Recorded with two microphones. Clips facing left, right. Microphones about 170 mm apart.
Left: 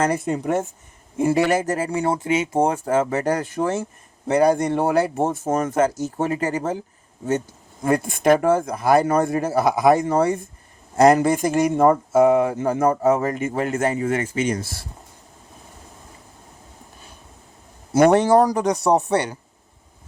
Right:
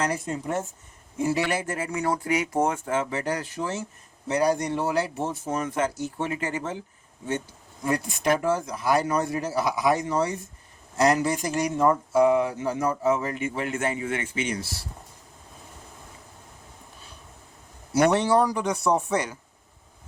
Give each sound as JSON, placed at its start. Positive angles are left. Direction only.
{"t": 0.0, "sound": "speech", "side_deg": 55}
{"t": 1.2, "sound": "speech", "side_deg": 50}
{"t": 7.9, "sound": "speech", "side_deg": 50}
{"t": 17.9, "sound": "speech", "side_deg": 50}